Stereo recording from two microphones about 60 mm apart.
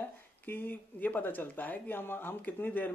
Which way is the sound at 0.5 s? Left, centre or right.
Left.